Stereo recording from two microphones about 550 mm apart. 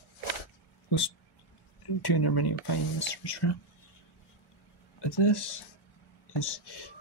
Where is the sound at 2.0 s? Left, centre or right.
Left.